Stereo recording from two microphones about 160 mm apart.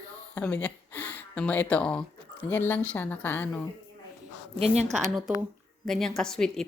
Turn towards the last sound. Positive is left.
turn(degrees=5)  # may be behind; listen again after turning